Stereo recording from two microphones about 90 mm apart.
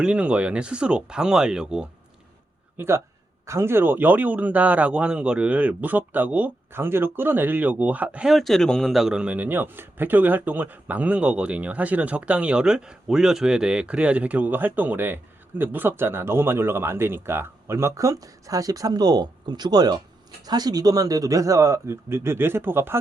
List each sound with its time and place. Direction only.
0.0 s a man's voice: 10° right (ahead or behind)
2.7 s a man's voice: 25° right (ahead or behind)
8.3 s a man's voice: centre (ahead or behind); by 23.0 s 25° right (ahead or behind)